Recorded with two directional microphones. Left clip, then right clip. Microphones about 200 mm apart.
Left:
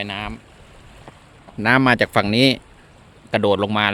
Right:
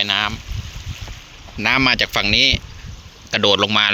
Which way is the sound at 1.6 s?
20° left (ahead or behind).